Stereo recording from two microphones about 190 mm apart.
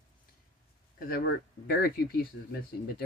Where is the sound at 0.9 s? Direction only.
50° left (ahead or behind).